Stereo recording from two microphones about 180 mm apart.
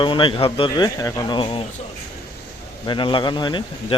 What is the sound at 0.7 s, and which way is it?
Speech, 20° left (ahead or behind).